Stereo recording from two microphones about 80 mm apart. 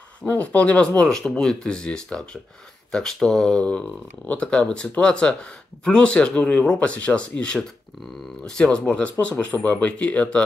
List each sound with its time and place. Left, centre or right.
0.2 s speech: centre